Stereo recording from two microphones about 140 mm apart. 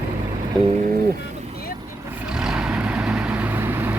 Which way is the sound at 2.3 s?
5° right (ahead or behind).